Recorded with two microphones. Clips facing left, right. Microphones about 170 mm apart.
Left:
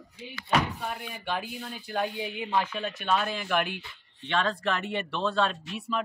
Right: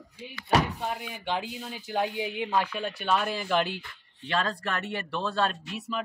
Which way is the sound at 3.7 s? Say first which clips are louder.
Right 1 dB; 25° left (ahead or behind).